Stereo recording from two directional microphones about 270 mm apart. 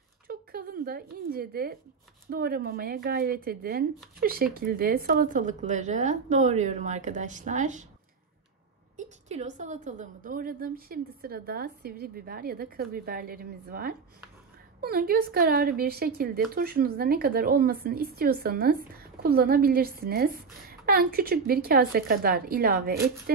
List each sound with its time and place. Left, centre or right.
0.3 s speech: right
8.9 s speech: right